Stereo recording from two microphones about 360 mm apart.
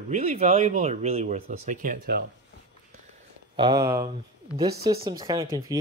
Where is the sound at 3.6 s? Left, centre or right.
Centre.